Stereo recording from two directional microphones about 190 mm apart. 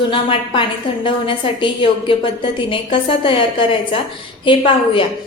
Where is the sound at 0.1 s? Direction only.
25° left (ahead or behind).